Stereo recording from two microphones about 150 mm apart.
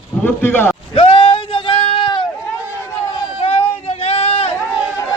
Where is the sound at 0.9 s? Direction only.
35° left (ahead or behind).